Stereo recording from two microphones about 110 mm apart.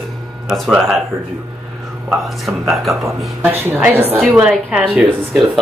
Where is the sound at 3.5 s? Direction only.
20° right (ahead or behind).